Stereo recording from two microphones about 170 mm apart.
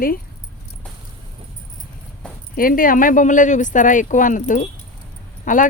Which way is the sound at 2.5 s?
55° left (ahead or behind).